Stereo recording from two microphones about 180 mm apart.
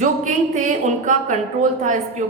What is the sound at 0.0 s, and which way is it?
A woman's voice, 45° right (ahead or behind).